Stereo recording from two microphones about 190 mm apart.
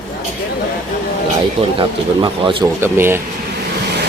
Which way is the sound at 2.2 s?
25° right (ahead or behind).